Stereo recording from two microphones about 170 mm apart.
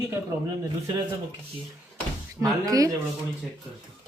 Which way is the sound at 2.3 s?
20° right (ahead or behind).